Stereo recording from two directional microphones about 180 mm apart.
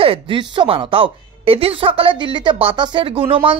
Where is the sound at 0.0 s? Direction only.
30° right (ahead or behind).